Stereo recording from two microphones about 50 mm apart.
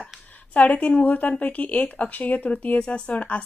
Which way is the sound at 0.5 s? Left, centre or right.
Left.